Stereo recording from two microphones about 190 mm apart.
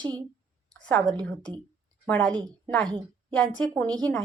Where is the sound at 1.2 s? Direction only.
5° left (ahead or behind).